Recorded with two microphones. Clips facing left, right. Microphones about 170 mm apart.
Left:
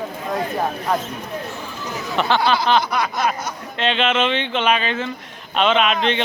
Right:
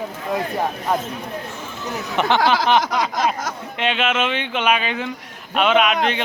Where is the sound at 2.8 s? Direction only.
90° right.